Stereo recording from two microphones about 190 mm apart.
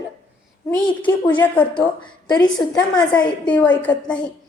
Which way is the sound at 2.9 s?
5° left (ahead or behind).